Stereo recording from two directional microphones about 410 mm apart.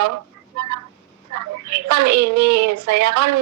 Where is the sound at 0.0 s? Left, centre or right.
Right.